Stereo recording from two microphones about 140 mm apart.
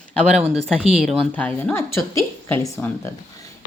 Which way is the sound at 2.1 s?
20° left (ahead or behind).